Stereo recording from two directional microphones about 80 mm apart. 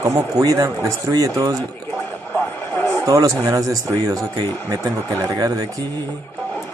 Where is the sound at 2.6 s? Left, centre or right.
Left.